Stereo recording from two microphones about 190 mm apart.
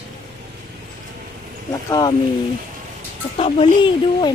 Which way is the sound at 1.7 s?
20° left (ahead or behind).